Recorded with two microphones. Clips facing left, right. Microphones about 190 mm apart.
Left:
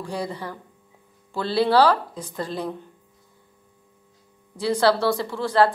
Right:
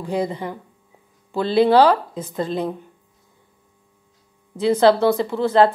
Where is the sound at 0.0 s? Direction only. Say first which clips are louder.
Right 6 dB; 20° right (ahead or behind).